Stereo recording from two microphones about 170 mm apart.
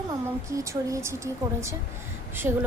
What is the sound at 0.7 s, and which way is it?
Speech, 15° right (ahead or behind).